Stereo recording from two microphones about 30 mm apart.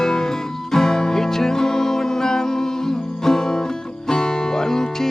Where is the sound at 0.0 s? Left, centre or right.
Centre.